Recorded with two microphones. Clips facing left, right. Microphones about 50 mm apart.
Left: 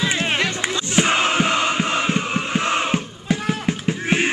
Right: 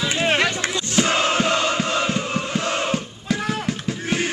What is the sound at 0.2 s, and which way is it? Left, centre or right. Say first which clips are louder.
Run: right 2 dB; centre.